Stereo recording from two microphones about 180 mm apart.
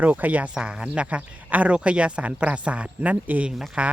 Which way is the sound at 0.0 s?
10° right (ahead or behind).